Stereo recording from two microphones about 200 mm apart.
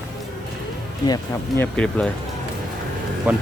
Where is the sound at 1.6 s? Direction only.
5° left (ahead or behind).